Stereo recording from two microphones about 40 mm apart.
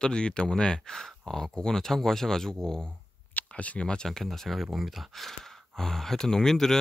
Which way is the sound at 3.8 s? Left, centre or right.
Centre.